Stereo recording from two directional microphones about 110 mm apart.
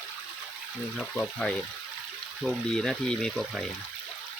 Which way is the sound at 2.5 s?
5° left (ahead or behind).